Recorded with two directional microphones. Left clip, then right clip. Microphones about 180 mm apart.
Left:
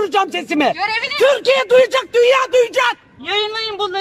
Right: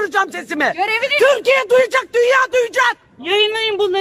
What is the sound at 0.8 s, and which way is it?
Speech, 50° right (ahead or behind).